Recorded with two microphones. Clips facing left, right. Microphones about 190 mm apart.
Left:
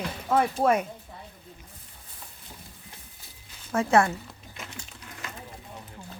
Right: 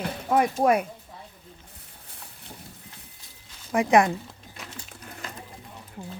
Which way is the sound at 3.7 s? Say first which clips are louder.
Right 2 dB; 15° right (ahead or behind).